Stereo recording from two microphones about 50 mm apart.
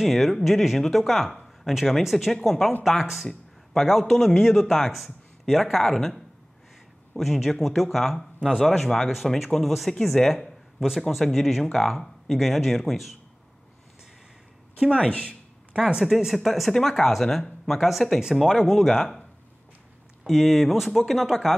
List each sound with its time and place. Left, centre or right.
0.0 s a man's voice: centre
8.4 s speech: centre
8.6 s a man's voice: centre
10.8 s a man's voice: centre
15.1 s a sound: right
16.0 s a man's voice: centre
20.2 s a man's voice: centre